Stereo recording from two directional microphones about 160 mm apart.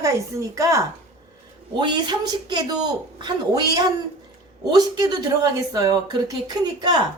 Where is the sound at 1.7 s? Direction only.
25° right (ahead or behind).